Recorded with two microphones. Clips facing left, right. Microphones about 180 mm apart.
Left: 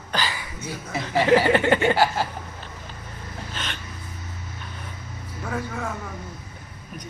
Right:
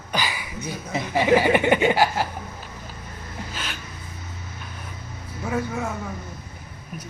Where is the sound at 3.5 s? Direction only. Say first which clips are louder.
Left 2 dB; 5° right (ahead or behind).